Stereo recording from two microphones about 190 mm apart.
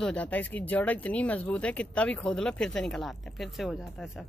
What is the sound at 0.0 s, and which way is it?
Speech, 5° left (ahead or behind).